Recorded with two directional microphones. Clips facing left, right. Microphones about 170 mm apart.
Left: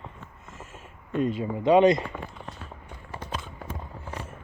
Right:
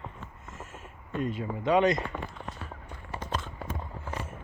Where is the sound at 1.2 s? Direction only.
30° left (ahead or behind).